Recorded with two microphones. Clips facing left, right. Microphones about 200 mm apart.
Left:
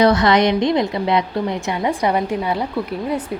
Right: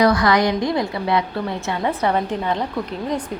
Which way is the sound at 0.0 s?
25° left (ahead or behind).